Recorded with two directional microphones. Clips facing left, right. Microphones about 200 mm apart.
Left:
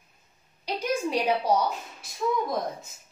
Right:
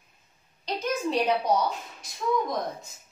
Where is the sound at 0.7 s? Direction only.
10° left (ahead or behind).